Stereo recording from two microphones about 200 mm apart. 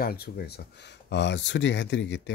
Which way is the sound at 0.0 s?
50° left (ahead or behind).